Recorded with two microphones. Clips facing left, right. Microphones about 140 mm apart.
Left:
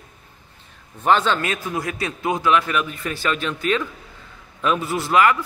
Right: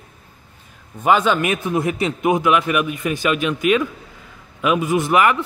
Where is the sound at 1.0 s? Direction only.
10° right (ahead or behind).